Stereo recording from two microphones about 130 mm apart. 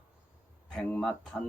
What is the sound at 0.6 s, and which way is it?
Speech, 5° left (ahead or behind).